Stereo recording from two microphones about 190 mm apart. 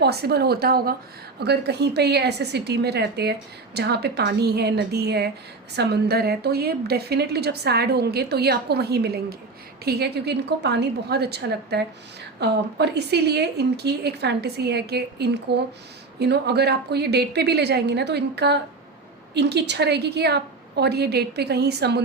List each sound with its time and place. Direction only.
0.0 s a woman's voice: 60° right (ahead or behind)